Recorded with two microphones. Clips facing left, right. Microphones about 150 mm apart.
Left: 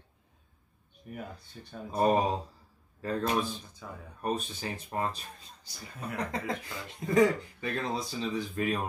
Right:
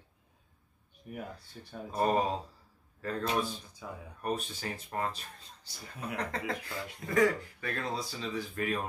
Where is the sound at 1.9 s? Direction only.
15° left (ahead or behind).